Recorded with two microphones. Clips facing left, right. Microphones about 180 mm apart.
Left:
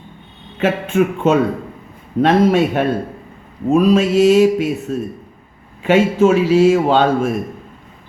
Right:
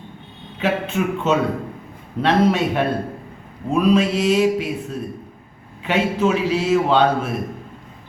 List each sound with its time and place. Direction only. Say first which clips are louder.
0.6 s a man's voice: left 5 dB; 50° left (ahead or behind)